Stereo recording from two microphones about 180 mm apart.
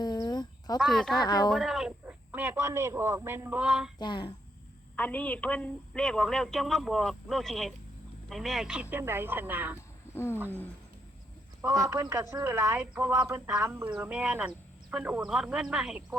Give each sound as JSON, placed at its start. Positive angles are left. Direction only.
{"t": 0.0, "sound": "a sound", "side_deg": 25}
{"t": 0.8, "sound": "a woman's voice", "side_deg": 0}
{"t": 1.2, "sound": "a woman's voice", "side_deg": 25}
{"t": 1.5, "sound": "a woman's voice", "side_deg": 0}
{"t": 3.9, "sound": "a woman's voice", "side_deg": 25}
{"t": 4.9, "sound": "a woman's voice", "side_deg": 10}
{"t": 11.9, "sound": "a woman's voice", "side_deg": -15}